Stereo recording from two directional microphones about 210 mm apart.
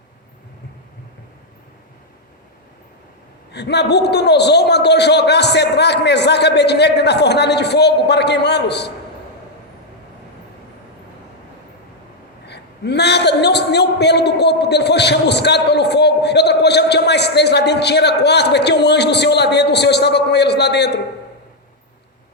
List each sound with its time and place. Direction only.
3.5 s a man's voice: 55° left (ahead or behind)
12.5 s a man's voice: 50° left (ahead or behind)